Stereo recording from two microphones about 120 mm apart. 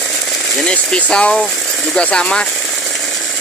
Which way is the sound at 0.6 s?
5° left (ahead or behind).